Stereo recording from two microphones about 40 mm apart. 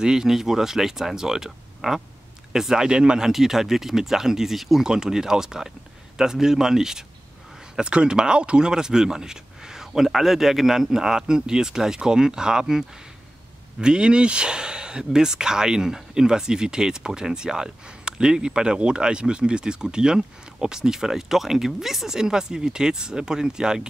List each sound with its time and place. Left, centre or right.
0.0 s speech: centre
3.3 s speech: centre
4.8 s speech: centre